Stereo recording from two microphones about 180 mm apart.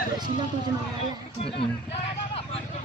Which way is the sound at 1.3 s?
30° left (ahead or behind).